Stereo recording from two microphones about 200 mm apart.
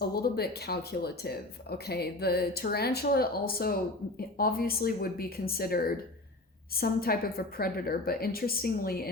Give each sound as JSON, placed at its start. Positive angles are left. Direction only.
{"t": 0.0, "sound": "speech", "side_deg": 50}